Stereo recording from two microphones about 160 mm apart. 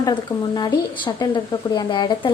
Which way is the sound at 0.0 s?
25° left (ahead or behind).